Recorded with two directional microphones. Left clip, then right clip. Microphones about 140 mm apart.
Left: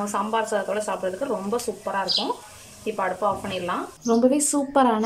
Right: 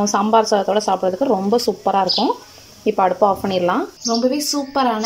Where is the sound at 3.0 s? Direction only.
45° right (ahead or behind).